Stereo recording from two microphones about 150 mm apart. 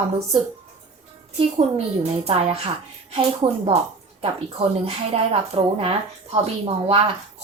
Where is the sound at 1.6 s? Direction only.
45° right (ahead or behind).